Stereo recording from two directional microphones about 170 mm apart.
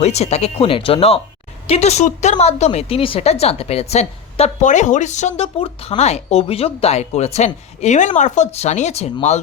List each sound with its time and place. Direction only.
0.0 s a woman's voice: 40° left (ahead or behind)